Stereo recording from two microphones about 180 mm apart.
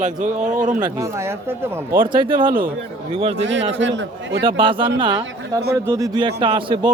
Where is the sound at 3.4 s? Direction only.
90° right.